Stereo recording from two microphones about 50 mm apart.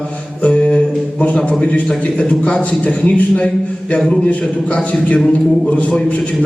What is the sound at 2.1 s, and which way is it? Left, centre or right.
A man's voice, left.